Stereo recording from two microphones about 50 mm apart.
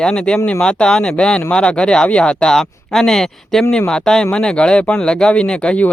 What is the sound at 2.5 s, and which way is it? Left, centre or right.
Speech, centre.